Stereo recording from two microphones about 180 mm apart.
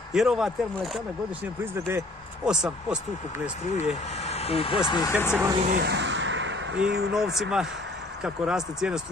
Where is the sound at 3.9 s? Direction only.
35° left (ahead or behind).